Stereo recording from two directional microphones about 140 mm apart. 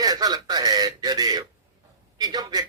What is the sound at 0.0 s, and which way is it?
Speech, 30° right (ahead or behind).